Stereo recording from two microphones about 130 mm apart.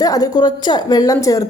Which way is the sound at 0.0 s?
30° left (ahead or behind).